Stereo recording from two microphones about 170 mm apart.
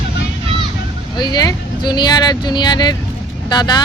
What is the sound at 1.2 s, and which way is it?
Speech, 25° left (ahead or behind).